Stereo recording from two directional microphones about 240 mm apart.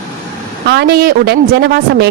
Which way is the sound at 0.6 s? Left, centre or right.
Right.